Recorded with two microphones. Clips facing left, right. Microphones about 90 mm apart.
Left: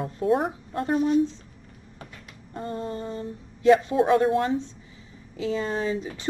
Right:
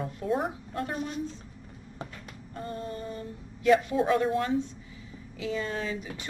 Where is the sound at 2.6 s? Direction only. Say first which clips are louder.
Left 5 dB; 30° left (ahead or behind).